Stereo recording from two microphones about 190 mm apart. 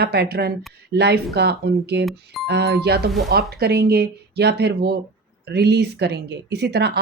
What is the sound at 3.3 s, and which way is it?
Speech, 55° right (ahead or behind).